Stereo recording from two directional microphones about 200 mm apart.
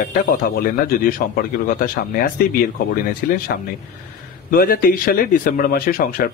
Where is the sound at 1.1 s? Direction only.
45° left (ahead or behind).